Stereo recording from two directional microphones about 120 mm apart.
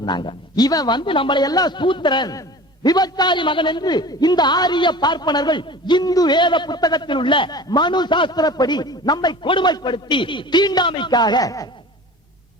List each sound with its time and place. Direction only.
0.0 s a man's voice: 40° left (ahead or behind)